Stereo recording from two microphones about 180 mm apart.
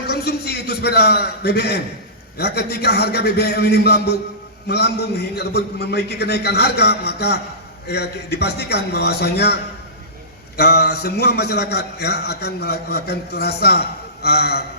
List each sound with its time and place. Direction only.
0.1 s a man's voice: 60° left (ahead or behind)
10.6 s a man's voice: 60° left (ahead or behind)